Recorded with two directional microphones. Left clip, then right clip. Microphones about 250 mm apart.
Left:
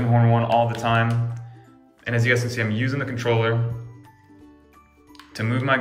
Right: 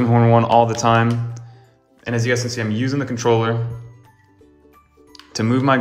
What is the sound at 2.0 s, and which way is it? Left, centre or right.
Speech, centre.